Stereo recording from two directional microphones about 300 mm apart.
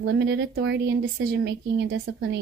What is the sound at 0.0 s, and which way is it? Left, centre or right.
A woman's voice, right.